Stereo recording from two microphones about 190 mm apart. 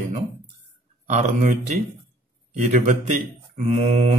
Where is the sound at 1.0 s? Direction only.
40° right (ahead or behind).